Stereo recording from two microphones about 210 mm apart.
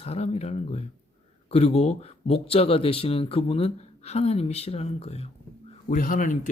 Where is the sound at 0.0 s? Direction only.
30° left (ahead or behind).